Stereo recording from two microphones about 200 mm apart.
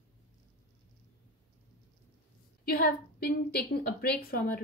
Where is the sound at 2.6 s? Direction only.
50° left (ahead or behind).